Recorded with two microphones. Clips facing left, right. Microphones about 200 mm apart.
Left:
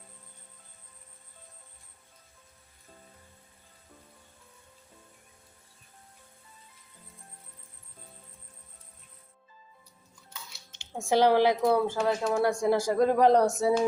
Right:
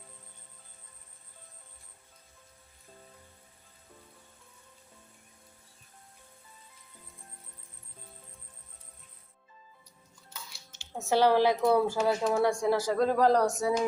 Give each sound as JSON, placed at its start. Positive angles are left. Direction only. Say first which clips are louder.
{"t": 10.8, "sound": "a woman's voice", "louder": "left 2 dB", "side_deg": 15}
{"t": 11.6, "sound": "speech", "louder": "even", "side_deg": -5}
{"t": 12.4, "sound": "speech", "louder": "left 1 dB", "side_deg": 5}